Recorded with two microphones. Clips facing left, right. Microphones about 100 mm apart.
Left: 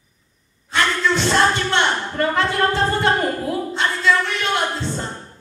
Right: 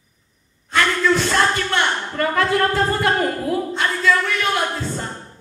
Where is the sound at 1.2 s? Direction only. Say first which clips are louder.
Left 1 dB; 25° left (ahead or behind).